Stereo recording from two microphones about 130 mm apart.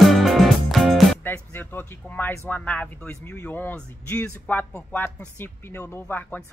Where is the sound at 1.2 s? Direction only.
15° left (ahead or behind).